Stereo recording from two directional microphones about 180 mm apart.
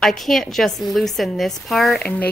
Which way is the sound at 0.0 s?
Centre (ahead or behind).